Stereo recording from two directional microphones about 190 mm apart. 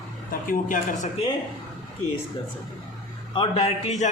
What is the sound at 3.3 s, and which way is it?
Speech, 30° left (ahead or behind).